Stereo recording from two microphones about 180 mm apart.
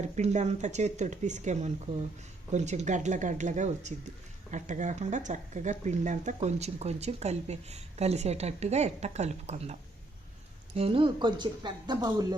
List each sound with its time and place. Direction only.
0.0 s speech: 40° right (ahead or behind)
10.8 s speech: 30° right (ahead or behind)